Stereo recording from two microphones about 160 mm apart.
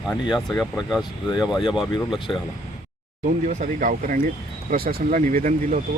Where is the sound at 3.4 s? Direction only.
55° right (ahead or behind).